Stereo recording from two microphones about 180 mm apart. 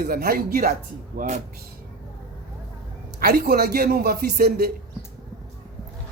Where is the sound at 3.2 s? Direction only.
60° right (ahead or behind).